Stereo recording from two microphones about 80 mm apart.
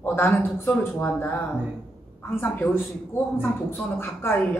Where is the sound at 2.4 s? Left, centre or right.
Left.